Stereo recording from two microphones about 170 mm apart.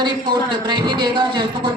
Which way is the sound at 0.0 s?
25° right (ahead or behind).